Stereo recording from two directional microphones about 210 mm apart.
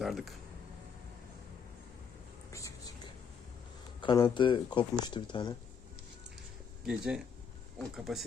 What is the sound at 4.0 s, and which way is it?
Speech, 20° left (ahead or behind).